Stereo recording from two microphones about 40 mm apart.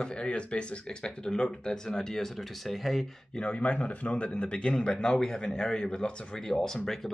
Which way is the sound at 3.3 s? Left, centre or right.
Left.